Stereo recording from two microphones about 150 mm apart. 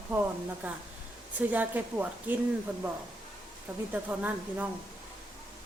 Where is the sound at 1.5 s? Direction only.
10° right (ahead or behind).